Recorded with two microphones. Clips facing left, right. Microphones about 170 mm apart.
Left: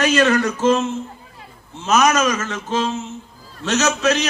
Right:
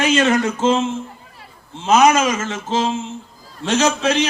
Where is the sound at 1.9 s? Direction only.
30° right (ahead or behind).